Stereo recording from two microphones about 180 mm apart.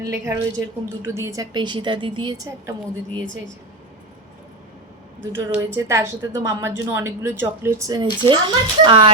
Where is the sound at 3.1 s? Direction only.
90° right.